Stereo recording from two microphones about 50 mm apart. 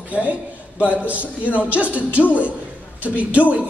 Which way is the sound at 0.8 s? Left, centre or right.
Right.